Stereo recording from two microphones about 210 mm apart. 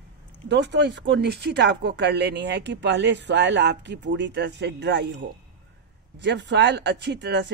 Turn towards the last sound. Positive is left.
turn(degrees=-55)  # may be behind; listen again after turning